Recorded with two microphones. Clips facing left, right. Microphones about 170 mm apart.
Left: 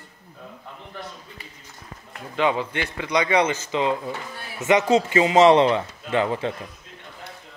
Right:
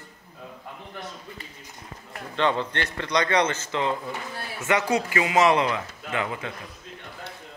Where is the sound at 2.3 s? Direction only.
10° left (ahead or behind); by 6.5 s 30° left (ahead or behind).